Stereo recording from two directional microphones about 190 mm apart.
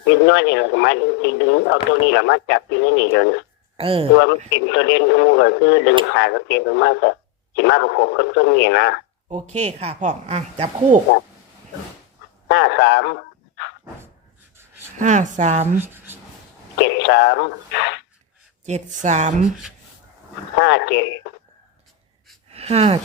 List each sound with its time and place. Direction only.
0.0 s speech: 70° left (ahead or behind)
3.8 s speech: 30° right (ahead or behind)
4.5 s speech: 70° left (ahead or behind)
9.3 s speech: 35° right (ahead or behind)
12.5 s speech: 65° left (ahead or behind)
14.9 s speech: 40° right (ahead or behind)
16.8 s speech: 70° left (ahead or behind)
18.6 s speech: 40° right (ahead or behind)
20.6 s speech: 70° left (ahead or behind)
22.5 s speech: 30° right (ahead or behind)